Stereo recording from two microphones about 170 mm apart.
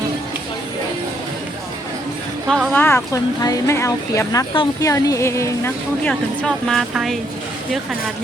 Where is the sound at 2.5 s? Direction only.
5° left (ahead or behind).